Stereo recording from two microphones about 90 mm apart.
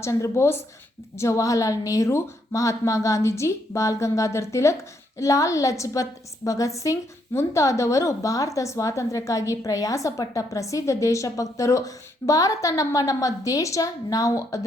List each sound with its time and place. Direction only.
0.0 s a woman's voice: 30° left (ahead or behind)